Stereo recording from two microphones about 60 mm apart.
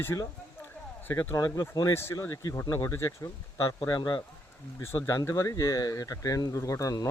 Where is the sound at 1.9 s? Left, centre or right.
Left.